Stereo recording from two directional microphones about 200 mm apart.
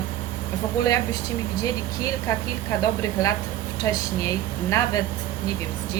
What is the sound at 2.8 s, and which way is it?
Speech, 15° left (ahead or behind).